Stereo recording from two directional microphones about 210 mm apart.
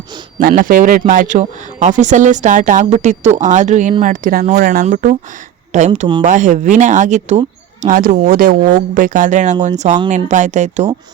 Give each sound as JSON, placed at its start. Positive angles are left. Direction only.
{"t": 0.3, "sound": "speech", "side_deg": -40}